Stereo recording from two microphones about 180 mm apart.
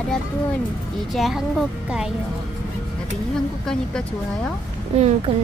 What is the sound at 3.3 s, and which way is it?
A woman's voice, 5° left (ahead or behind).